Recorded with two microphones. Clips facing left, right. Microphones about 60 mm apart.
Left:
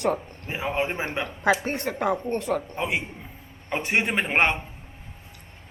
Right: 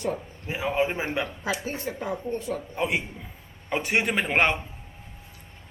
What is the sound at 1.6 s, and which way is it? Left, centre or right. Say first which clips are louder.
Speech: left 5 dB; left.